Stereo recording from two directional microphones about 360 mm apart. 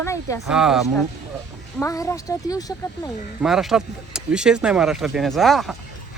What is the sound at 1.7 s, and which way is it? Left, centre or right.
Speech, centre.